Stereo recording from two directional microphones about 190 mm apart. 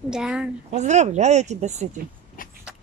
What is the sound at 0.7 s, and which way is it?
Speech, 35° right (ahead or behind).